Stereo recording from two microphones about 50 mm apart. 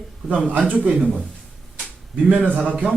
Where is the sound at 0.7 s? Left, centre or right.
Right.